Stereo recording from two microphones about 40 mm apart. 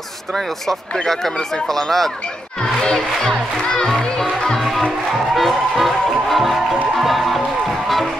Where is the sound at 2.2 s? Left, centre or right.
Left.